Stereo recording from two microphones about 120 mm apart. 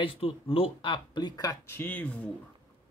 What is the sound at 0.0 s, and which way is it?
Speech, 50° left (ahead or behind).